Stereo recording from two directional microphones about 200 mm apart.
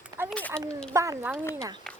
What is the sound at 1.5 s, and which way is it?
Speech, 15° right (ahead or behind).